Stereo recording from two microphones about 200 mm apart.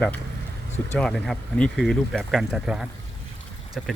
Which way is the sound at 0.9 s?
Centre (ahead or behind).